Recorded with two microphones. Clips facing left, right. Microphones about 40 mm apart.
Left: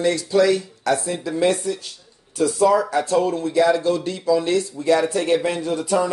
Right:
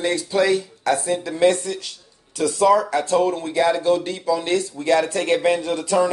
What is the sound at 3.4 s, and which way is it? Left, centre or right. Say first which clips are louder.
Speech: left 2 dB; right.